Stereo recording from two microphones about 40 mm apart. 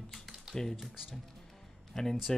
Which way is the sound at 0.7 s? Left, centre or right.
Centre.